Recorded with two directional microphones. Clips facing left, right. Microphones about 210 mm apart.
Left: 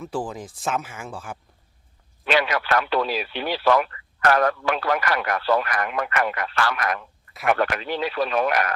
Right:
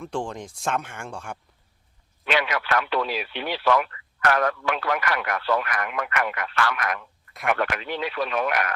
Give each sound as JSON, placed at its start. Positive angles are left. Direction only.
{"t": 0.0, "sound": "speech", "side_deg": 5}
{"t": 2.2, "sound": "speech", "side_deg": 35}